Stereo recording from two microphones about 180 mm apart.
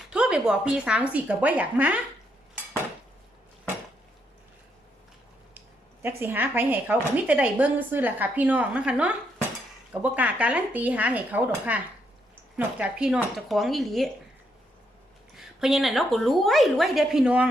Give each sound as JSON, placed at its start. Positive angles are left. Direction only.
{"t": 0.1, "sound": "speech", "side_deg": -5}
{"t": 5.5, "sound": "a woman's voice", "side_deg": -10}
{"t": 15.4, "sound": "a woman's voice", "side_deg": 0}